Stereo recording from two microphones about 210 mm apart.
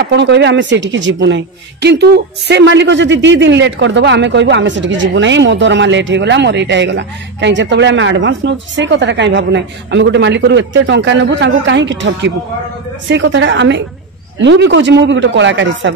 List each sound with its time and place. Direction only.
0.1 s speech: 55° right (ahead or behind)